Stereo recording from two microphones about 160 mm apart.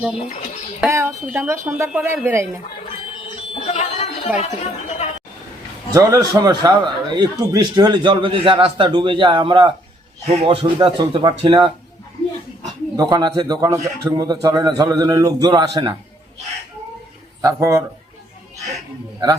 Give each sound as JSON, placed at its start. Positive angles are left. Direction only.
{"t": 0.9, "sound": "speech", "side_deg": -15}
{"t": 3.5, "sound": "a sound", "side_deg": 40}
{"t": 4.4, "sound": "speech", "side_deg": 45}
{"t": 5.9, "sound": "a man's voice", "side_deg": -20}
{"t": 13.0, "sound": "a man's voice", "side_deg": -25}
{"t": 17.4, "sound": "a man's voice", "side_deg": -20}